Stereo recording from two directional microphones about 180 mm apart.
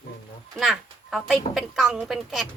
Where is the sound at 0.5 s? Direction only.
Centre (ahead or behind).